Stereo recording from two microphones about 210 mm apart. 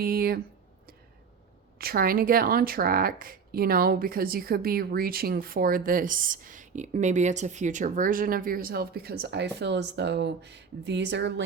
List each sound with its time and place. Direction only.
0.0 s speech: 45° right (ahead or behind)
1.8 s speech: 45° right (ahead or behind)